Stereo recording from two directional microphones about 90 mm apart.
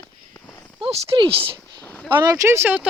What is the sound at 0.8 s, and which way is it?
Speech, 75° right (ahead or behind).